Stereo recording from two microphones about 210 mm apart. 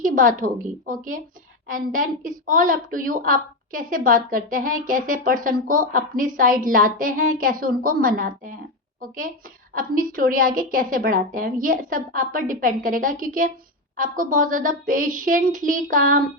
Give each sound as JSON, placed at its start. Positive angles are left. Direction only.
{"t": 0.0, "sound": "a woman's voice", "side_deg": -40}